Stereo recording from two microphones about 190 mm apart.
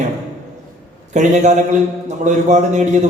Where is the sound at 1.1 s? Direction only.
40° right (ahead or behind).